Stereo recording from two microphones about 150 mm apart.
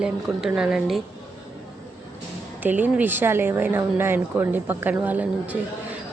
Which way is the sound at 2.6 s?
10° right (ahead or behind).